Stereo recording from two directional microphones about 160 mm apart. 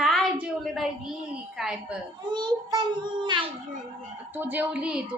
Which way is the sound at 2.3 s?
25° right (ahead or behind).